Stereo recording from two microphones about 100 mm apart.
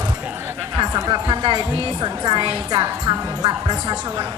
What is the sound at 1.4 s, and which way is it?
Speech, 50° right (ahead or behind).